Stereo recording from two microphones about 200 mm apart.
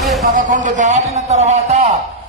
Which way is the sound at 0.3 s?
40° right (ahead or behind).